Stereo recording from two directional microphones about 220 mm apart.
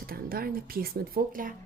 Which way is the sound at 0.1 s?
40° right (ahead or behind).